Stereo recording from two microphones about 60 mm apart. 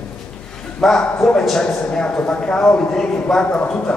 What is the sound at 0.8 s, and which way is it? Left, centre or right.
A man's voice, centre.